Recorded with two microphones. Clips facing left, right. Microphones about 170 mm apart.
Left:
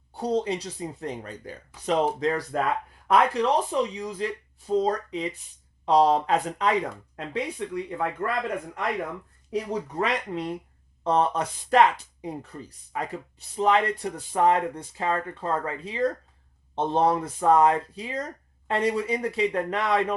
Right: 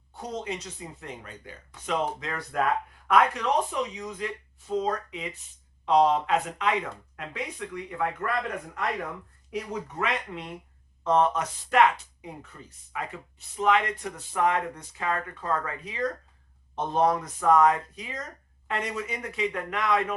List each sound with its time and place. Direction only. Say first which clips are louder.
0.1 s speech: left 8 dB; 35° left (ahead or behind)
9.5 s speech: left 4 dB; 35° left (ahead or behind)